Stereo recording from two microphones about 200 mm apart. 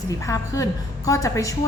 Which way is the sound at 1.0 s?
15° left (ahead or behind).